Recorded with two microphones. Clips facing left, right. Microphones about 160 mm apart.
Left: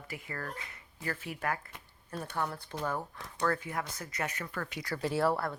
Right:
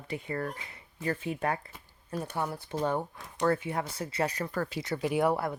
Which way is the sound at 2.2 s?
10° right (ahead or behind).